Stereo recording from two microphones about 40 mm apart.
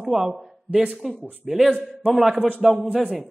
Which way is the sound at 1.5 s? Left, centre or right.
Centre.